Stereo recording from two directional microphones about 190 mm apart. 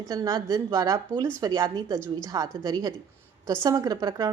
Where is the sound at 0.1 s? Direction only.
20° right (ahead or behind).